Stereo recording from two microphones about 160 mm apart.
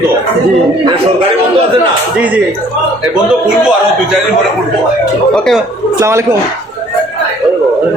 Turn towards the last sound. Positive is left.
turn(degrees=-15)  # may be behind; listen again after turning